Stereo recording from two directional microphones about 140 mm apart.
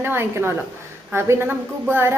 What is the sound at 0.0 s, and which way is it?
A woman's voice, 15° right (ahead or behind).